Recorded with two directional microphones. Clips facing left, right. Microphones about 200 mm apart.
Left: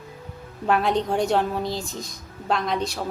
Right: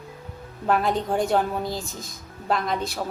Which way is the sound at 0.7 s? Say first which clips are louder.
Left 1 dB; centre (ahead or behind).